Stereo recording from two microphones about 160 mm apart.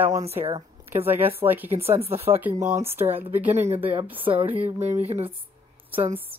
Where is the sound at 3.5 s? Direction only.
40° right (ahead or behind).